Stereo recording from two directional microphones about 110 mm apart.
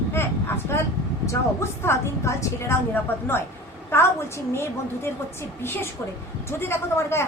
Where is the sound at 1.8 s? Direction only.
25° left (ahead or behind).